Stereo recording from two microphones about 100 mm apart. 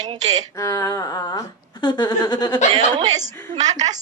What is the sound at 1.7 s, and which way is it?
Speech, 50° left (ahead or behind).